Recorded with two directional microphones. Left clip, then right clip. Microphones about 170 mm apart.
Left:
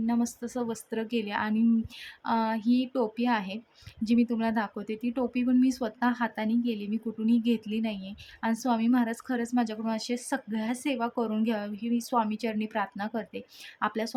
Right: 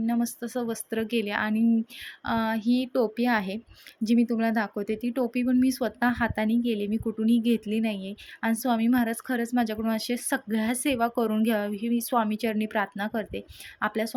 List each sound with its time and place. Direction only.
0.0 s a woman's voice: 10° right (ahead or behind)